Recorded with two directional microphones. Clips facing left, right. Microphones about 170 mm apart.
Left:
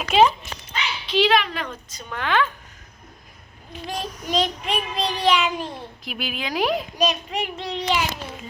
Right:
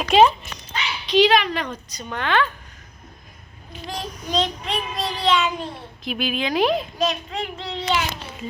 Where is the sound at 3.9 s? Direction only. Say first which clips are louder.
Even; 10° left (ahead or behind).